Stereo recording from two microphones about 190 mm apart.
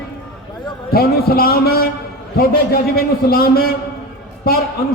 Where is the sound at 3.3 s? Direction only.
50° left (ahead or behind).